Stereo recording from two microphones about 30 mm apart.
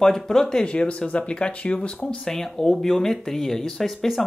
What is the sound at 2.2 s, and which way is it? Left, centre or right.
Speech, centre.